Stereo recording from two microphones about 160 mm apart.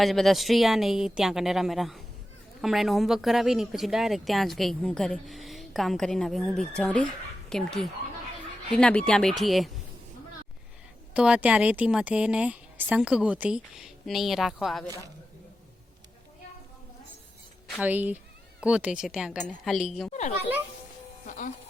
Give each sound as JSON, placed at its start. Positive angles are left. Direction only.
{"t": 0.0, "sound": "speech", "side_deg": 0}
{"t": 11.1, "sound": "speech", "side_deg": -5}
{"t": 17.7, "sound": "speech", "side_deg": -10}
{"t": 21.2, "sound": "music", "side_deg": 55}